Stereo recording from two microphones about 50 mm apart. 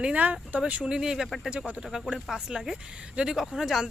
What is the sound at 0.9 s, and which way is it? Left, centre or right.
Speech, centre.